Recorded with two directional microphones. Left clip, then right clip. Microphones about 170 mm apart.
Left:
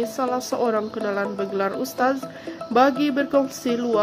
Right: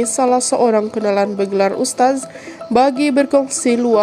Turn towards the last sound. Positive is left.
turn(degrees=-30)  # may be behind; listen again after turning